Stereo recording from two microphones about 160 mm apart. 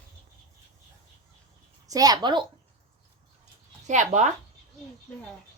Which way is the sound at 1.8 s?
25° right (ahead or behind).